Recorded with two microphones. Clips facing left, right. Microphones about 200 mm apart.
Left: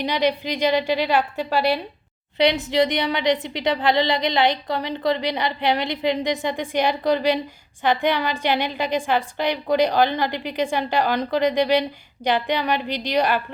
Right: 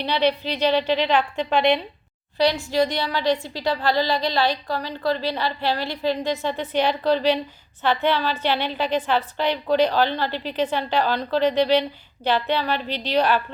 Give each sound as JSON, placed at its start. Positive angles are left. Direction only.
{"t": 0.0, "sound": "a woman's voice", "side_deg": 15}
{"t": 2.4, "sound": "a woman's voice", "side_deg": 20}